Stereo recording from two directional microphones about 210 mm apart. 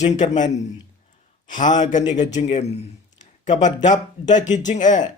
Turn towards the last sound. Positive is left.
turn(degrees=35)  # may be behind; listen again after turning